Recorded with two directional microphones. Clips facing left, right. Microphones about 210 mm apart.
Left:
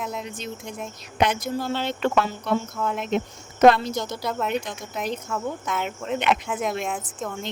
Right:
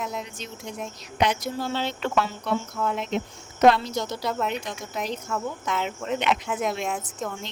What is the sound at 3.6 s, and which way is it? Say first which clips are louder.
Speech: left 3 dB; 50° left (ahead or behind).